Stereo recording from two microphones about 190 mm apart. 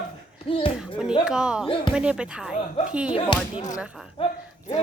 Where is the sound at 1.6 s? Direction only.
25° left (ahead or behind).